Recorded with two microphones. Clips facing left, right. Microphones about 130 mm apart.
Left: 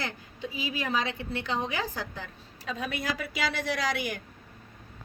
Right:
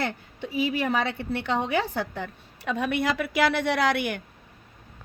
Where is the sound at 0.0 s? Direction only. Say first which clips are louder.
Right 5 dB; 60° right (ahead or behind).